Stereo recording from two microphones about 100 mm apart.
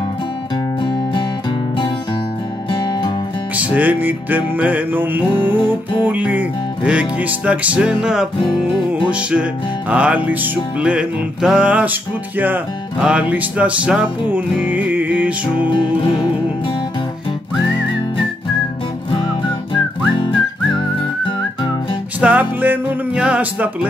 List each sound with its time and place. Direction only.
2.7 s music: 45° left (ahead or behind)
3.5 s music: 15° right (ahead or behind)
20.2 s music: 55° left (ahead or behind)
22.2 s music: 15° right (ahead or behind)